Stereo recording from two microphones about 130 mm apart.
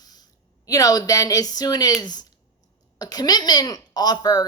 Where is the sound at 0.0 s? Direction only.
30° left (ahead or behind).